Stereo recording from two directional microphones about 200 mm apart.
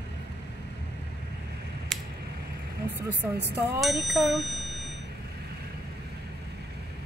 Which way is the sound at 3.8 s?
Centre (ahead or behind).